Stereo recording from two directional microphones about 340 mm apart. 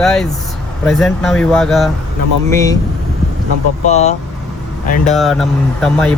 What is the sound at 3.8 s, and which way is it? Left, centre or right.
Speech, centre.